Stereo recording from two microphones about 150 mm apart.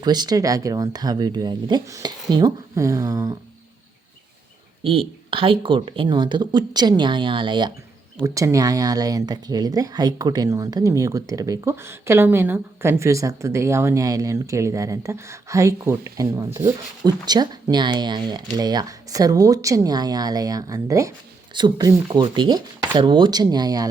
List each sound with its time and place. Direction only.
0.0 s speech: 25° right (ahead or behind)
4.8 s speech: 35° right (ahead or behind)
8.2 s speech: 20° right (ahead or behind)